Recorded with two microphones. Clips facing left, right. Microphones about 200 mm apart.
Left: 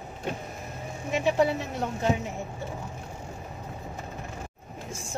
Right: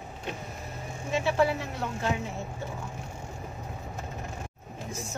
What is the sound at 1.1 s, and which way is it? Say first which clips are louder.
Speech: left 2 dB; 15° left (ahead or behind).